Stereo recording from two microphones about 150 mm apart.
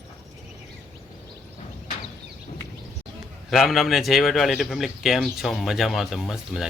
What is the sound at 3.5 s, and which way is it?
Speech, centre (ahead or behind).